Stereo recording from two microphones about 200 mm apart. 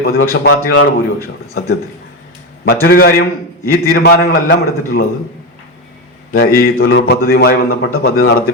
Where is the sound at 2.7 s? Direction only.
50° left (ahead or behind).